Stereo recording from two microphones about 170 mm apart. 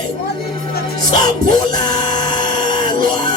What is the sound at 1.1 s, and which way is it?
Mantra, 55° right (ahead or behind).